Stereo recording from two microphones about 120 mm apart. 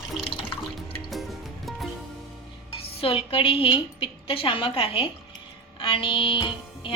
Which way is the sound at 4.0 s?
50° left (ahead or behind).